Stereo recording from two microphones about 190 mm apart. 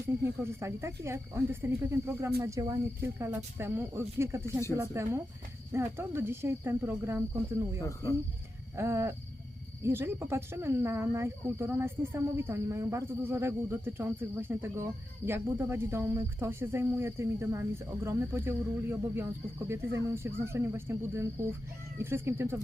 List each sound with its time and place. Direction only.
0.4 s speech: 15° right (ahead or behind)
7.8 s speech: 15° left (ahead or behind)
8.7 s wild animals: 15° right (ahead or behind)
9.8 s speech: 10° right (ahead or behind)